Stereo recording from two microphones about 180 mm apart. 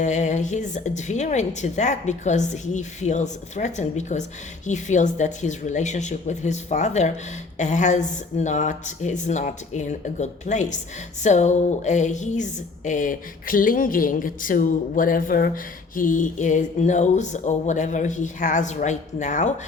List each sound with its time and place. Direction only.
0.0 s a woman's voice: 40° left (ahead or behind)